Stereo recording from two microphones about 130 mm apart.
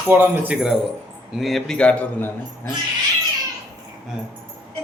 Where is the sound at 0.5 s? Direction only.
5° right (ahead or behind).